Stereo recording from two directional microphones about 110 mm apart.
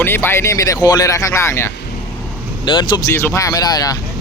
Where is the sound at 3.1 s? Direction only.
25° left (ahead or behind).